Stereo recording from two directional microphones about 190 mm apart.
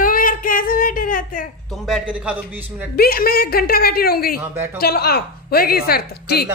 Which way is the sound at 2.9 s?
50° left (ahead or behind).